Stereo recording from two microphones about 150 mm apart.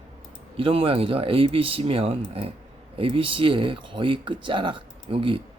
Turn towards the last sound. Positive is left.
turn(degrees=-35)  # may be behind; listen again after turning